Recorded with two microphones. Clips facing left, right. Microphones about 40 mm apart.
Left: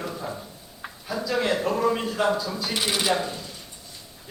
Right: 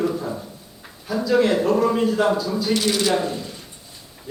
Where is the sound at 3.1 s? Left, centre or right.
Centre.